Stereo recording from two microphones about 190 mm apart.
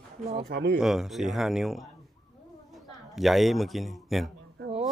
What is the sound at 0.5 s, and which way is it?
Speech, 55° right (ahead or behind).